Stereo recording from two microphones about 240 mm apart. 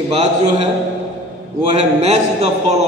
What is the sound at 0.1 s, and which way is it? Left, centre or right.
Speech, right.